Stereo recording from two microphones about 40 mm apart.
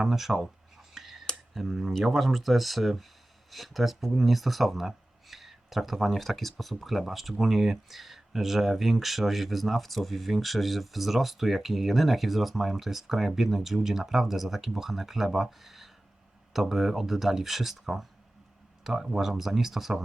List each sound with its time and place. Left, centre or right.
0.0 s speech: centre
0.4 s whispering: centre
1.5 s speech: centre